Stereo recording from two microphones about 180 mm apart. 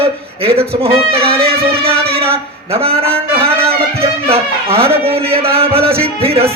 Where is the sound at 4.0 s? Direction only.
35° right (ahead or behind).